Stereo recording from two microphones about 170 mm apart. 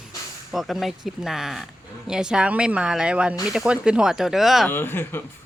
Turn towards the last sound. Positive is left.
turn(degrees=15)  # may be behind; listen again after turning